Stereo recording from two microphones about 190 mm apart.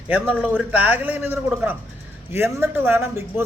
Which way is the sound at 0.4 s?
10° right (ahead or behind).